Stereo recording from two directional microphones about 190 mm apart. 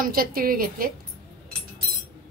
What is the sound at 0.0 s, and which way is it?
Speech, 50° right (ahead or behind).